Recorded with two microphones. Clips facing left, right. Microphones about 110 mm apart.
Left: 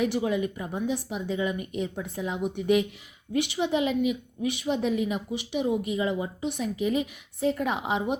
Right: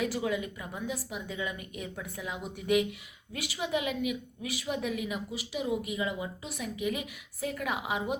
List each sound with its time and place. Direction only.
0.0 s a woman's voice: 25° left (ahead or behind)